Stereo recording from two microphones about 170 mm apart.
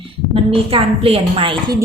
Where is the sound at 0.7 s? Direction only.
35° right (ahead or behind).